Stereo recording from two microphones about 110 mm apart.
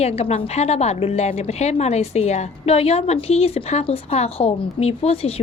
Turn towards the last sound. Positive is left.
turn(degrees=65)  # may be behind; listen again after turning